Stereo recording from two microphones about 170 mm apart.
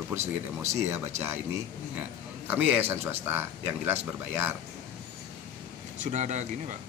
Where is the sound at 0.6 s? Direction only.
15° right (ahead or behind).